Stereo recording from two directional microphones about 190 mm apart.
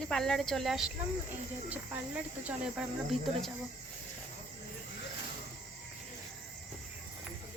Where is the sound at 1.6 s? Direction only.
10° right (ahead or behind).